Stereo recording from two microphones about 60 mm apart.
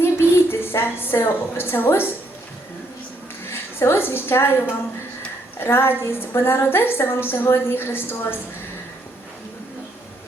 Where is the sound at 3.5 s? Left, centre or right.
Left.